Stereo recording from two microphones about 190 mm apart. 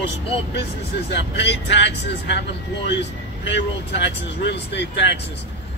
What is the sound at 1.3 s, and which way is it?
Speech, 65° left (ahead or behind).